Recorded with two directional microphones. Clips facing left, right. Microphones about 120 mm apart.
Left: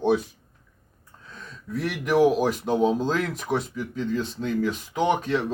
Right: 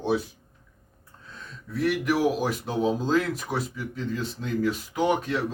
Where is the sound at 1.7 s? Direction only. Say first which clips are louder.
Left 3 dB; centre (ahead or behind).